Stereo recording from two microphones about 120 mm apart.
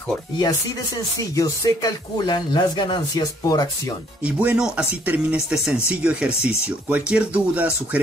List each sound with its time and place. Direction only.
1.3 s speech: 30° left (ahead or behind)
4.2 s speech: 10° right (ahead or behind)